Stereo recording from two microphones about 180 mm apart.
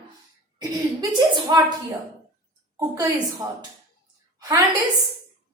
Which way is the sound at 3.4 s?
20° right (ahead or behind).